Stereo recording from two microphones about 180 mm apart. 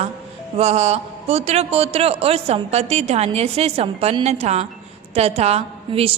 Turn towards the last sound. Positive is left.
turn(degrees=-35)  # may be behind; listen again after turning